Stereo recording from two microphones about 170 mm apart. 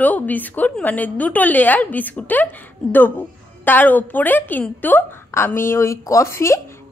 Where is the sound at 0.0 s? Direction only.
10° left (ahead or behind).